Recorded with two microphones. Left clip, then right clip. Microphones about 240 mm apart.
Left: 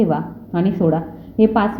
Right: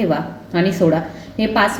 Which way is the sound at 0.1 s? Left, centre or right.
Left.